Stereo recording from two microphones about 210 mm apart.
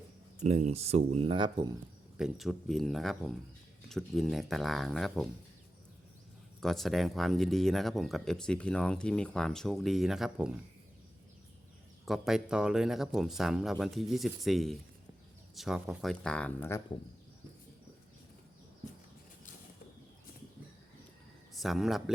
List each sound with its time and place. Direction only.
0.4 s speech: 30° right (ahead or behind)
2.1 s speech: centre (ahead or behind)
6.6 s speech: centre (ahead or behind)
12.0 s speech: centre (ahead or behind)
21.5 s speech: centre (ahead or behind)